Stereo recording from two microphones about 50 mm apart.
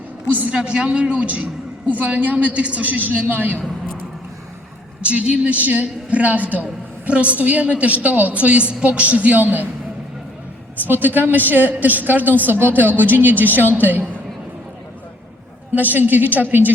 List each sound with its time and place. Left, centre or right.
0.5 s a woman's voice: right
5.0 s a woman's voice: right
10.8 s a woman's voice: right
15.7 s a woman's voice: right